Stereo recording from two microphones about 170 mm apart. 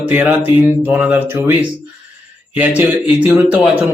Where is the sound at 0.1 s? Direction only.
10° right (ahead or behind).